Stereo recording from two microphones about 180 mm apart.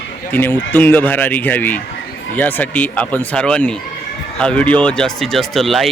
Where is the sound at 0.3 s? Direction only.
10° left (ahead or behind).